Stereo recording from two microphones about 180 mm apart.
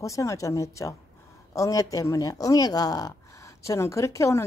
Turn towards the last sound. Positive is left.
turn(degrees=15)  # may be behind; listen again after turning